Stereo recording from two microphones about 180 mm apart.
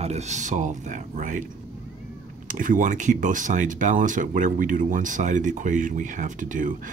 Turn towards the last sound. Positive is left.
turn(degrees=-45)  # may be behind; listen again after turning